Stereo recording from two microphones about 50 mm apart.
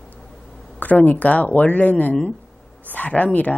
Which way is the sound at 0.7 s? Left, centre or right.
Left.